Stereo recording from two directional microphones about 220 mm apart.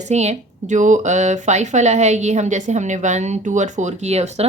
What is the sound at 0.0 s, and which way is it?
A woman's voice, 30° right (ahead or behind).